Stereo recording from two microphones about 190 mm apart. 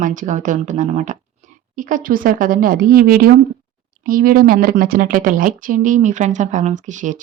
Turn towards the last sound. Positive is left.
turn(degrees=-40)  # may be behind; listen again after turning